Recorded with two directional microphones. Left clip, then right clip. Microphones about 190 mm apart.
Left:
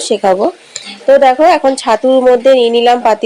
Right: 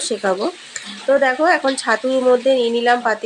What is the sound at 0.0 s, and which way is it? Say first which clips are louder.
Speech: left 9 dB; 25° left (ahead or behind).